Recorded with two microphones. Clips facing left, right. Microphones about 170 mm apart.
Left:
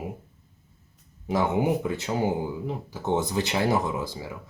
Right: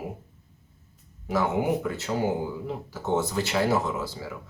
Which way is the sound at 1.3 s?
20° left (ahead or behind).